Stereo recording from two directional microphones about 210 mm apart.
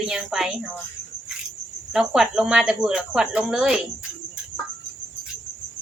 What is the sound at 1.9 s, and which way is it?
Speech, centre (ahead or behind).